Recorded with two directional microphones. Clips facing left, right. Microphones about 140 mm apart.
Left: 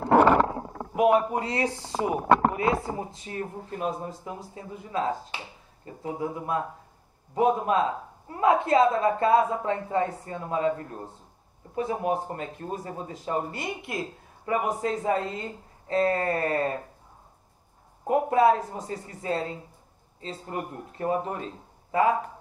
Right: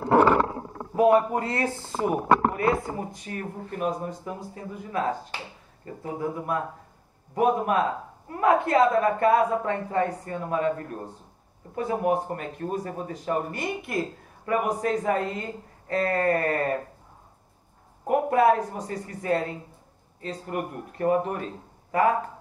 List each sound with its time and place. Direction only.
0.9 s speech: 15° left (ahead or behind)
18.0 s speech: 25° left (ahead or behind)